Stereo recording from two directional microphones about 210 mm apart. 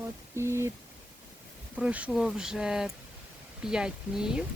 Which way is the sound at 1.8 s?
5° right (ahead or behind).